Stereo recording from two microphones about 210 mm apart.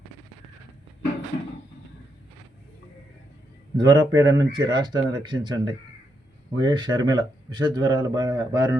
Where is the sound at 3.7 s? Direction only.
20° right (ahead or behind).